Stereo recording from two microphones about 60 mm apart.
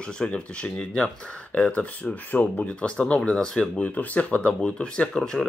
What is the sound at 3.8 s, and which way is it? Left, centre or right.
Speech, left.